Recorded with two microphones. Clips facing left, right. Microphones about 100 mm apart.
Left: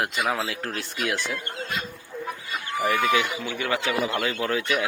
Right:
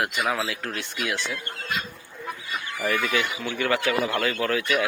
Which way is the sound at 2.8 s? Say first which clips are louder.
Left 3 dB; 20° left (ahead or behind).